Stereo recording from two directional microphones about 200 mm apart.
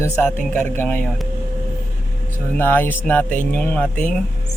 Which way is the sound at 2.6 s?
10° left (ahead or behind).